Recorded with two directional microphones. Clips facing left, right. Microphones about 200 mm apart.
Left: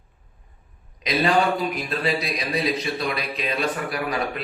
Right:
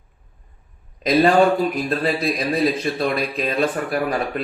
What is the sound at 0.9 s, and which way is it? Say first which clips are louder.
A man's voice: right 6 dB; 50° right (ahead or behind).